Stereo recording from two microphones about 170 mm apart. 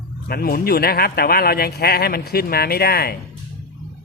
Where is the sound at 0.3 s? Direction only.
65° left (ahead or behind).